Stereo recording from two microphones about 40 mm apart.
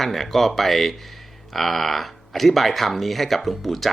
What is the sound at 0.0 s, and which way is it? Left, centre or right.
Speech, centre.